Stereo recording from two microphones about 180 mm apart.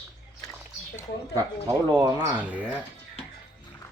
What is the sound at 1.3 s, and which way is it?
Speech, 20° right (ahead or behind).